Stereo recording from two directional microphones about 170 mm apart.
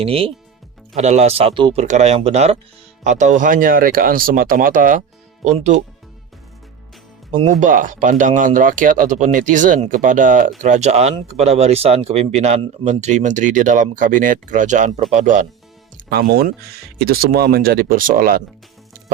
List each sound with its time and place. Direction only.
0.0 s speech: 35° right (ahead or behind)
1.8 s speech: 45° right (ahead or behind)
7.3 s speech: 45° right (ahead or behind)
16.0 s speech: 60° right (ahead or behind)